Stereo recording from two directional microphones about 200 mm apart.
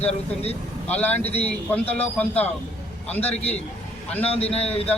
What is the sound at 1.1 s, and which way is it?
Speech, 30° left (ahead or behind).